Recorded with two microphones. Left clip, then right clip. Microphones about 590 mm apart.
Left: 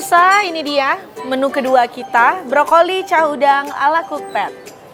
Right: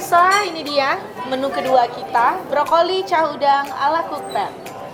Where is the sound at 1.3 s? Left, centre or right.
Left.